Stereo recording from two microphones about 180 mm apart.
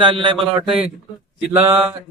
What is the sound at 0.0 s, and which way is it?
Speech, 25° right (ahead or behind).